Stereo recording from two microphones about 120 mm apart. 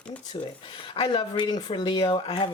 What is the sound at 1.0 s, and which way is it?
Speech, 45° left (ahead or behind).